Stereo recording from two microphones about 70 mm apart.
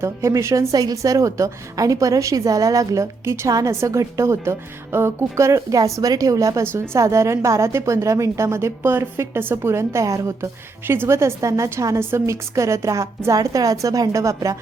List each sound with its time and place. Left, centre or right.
0.0 s a woman's voice: right
0.7 s a woman's voice: right
10.8 s a woman's voice: right